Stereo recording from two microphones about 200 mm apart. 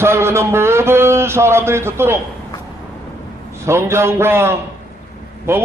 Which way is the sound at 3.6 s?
15° right (ahead or behind).